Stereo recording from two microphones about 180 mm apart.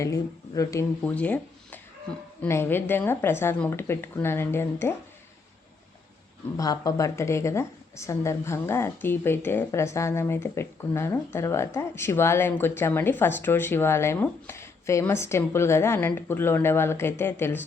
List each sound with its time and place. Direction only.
0.0 s speech: 20° left (ahead or behind)
6.6 s speech: 20° left (ahead or behind)